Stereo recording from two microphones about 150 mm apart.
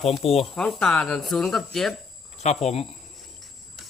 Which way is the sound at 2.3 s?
45° left (ahead or behind).